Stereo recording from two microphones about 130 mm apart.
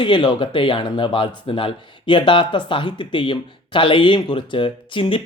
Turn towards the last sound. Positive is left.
turn(degrees=40)  # may be behind; listen again after turning